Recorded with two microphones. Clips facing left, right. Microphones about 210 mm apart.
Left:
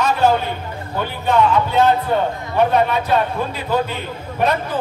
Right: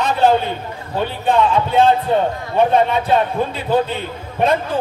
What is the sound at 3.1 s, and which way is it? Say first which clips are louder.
Speech: right 2 dB; 25° right (ahead or behind).